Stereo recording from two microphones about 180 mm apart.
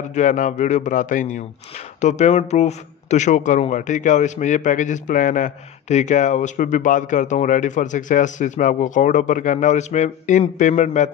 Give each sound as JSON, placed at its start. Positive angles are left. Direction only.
{"t": 0.1, "sound": "a man's voice", "side_deg": 45}